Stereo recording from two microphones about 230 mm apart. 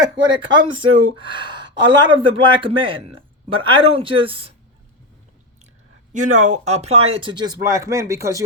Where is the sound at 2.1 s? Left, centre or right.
Right.